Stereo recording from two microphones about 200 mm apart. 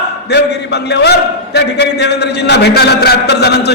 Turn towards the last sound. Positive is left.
turn(degrees=55)  # may be behind; listen again after turning